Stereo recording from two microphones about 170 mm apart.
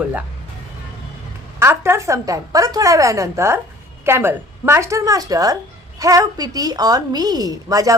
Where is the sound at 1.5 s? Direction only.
15° right (ahead or behind).